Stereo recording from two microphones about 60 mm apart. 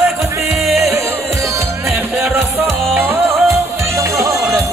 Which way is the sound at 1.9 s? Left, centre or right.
Right.